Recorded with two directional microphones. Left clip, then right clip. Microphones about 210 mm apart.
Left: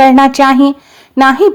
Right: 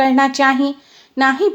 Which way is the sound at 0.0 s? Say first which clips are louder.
Left 7 dB; 30° left (ahead or behind).